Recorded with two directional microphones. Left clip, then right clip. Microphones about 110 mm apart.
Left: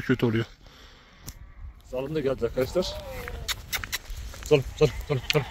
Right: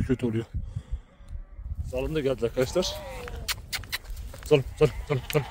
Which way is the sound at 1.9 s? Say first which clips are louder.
Even; 5° right (ahead or behind).